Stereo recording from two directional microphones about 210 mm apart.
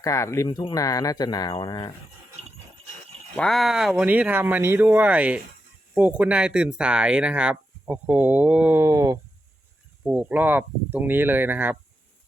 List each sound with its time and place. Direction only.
0.0 s speech: 15° left (ahead or behind)
3.3 s speech: centre (ahead or behind)